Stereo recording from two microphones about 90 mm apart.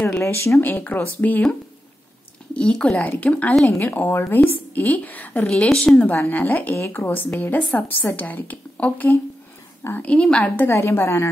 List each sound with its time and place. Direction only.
0.2 s speech: 30° left (ahead or behind)
0.7 s a woman's voice: 20° left (ahead or behind)
2.5 s a woman's voice: 10° left (ahead or behind)
10.5 s a woman's voice: 25° left (ahead or behind)